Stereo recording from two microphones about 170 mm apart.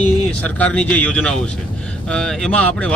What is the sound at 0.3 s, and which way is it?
Speech, 5° left (ahead or behind).